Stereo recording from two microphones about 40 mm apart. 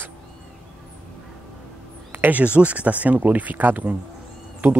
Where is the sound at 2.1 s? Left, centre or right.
Right.